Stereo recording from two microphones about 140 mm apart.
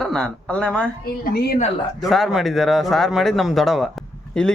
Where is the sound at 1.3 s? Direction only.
90° left.